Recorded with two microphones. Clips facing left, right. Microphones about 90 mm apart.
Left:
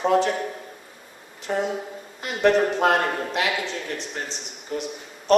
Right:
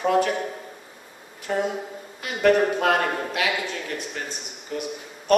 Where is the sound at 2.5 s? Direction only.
10° right (ahead or behind).